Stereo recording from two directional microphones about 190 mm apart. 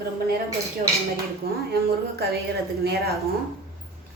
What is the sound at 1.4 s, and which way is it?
A woman's voice, 55° right (ahead or behind).